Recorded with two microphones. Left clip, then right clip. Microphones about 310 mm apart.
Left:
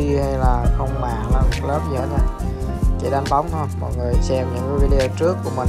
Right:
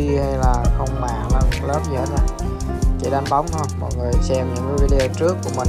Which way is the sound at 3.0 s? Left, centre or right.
Centre.